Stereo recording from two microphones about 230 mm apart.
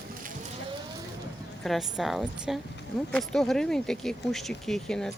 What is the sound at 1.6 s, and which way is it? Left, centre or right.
Speech, centre.